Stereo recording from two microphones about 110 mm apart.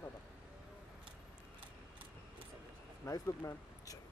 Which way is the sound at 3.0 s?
25° left (ahead or behind).